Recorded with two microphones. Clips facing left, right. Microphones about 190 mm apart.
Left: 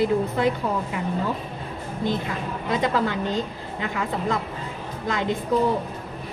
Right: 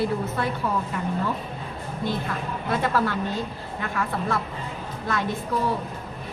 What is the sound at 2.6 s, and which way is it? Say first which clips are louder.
A woman's voice: left 1 dB; 15° left (ahead or behind).